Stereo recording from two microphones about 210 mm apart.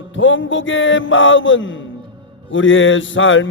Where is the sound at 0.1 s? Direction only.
65° left (ahead or behind).